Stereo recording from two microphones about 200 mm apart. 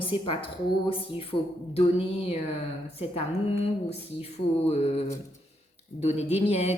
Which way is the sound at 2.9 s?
30° left (ahead or behind).